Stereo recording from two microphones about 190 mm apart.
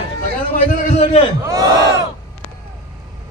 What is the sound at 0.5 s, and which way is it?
Speech, 40° left (ahead or behind).